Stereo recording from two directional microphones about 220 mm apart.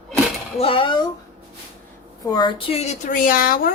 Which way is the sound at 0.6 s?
25° left (ahead or behind).